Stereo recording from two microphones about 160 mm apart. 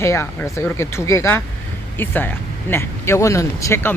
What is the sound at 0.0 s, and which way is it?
Speech, 15° left (ahead or behind).